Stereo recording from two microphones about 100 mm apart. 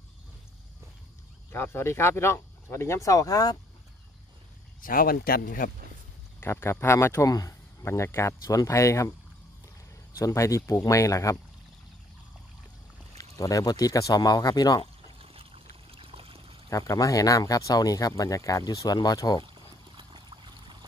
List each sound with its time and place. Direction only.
1.5 s speech: 25° left (ahead or behind)
6.4 s speech: 25° left (ahead or behind)
10.1 s speech: 30° left (ahead or behind)
13.2 s speech: 35° left (ahead or behind)
15.1 s a sound: 70° right (ahead or behind)
15.7 s pour: 65° right (ahead or behind)
16.6 s speech: 35° left (ahead or behind)
19.4 s a sound: 55° right (ahead or behind)